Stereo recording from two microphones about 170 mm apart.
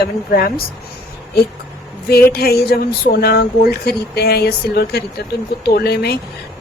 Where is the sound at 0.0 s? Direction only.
60° left (ahead or behind).